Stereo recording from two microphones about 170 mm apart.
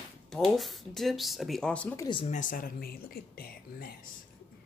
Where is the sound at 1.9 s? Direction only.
25° left (ahead or behind).